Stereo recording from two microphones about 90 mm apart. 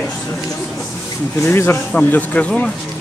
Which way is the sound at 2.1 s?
15° left (ahead or behind).